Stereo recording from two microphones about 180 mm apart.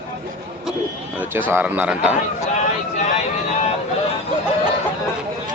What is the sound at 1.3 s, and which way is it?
Speech, 10° right (ahead or behind).